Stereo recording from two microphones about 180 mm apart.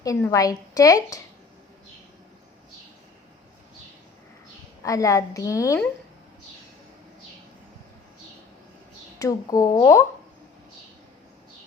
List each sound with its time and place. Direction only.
0.0 s a woman's voice: 20° left (ahead or behind)
4.8 s a woman's voice: 20° left (ahead or behind)
9.1 s a woman's voice: 20° left (ahead or behind)